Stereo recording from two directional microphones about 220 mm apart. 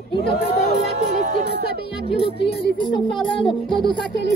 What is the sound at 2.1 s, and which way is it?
Speech, 25° left (ahead or behind).